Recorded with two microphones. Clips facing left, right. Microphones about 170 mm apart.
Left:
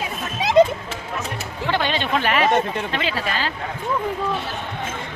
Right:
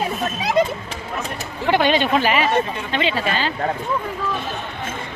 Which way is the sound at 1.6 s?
15° right (ahead or behind).